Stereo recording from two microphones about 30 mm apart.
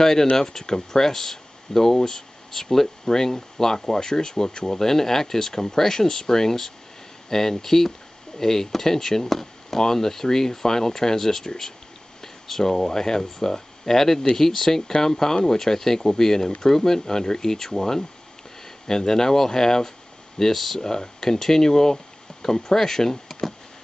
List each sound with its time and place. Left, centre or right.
0.0 s speech: centre